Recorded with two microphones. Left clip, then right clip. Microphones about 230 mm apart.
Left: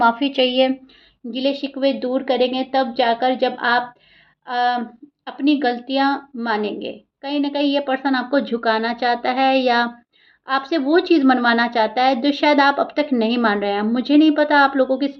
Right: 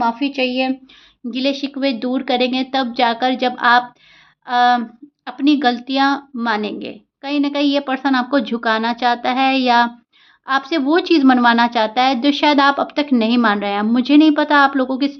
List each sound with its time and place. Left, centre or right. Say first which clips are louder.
0.0 s a woman's voice: left 2 dB; centre
1.3 s a woman's voice: right 1 dB; right